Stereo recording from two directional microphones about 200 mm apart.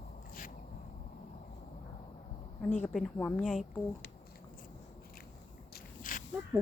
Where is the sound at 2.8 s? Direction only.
5° left (ahead or behind).